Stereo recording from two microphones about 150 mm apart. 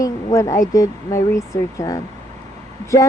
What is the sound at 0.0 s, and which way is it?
Speech, 25° left (ahead or behind).